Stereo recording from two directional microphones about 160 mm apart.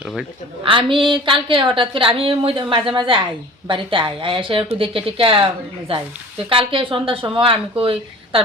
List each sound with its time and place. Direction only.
0.0 s speech: 5° right (ahead or behind)
0.6 s a woman's voice: 30° right (ahead or behind)